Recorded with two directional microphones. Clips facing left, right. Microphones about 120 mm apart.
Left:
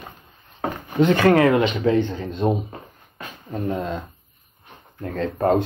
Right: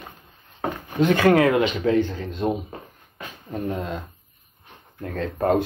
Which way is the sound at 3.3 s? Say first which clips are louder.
Left 2 dB; 10° left (ahead or behind).